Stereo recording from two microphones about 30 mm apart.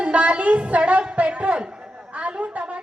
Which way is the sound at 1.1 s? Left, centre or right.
Right.